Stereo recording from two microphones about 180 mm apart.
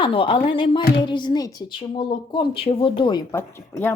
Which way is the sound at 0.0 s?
30° left (ahead or behind).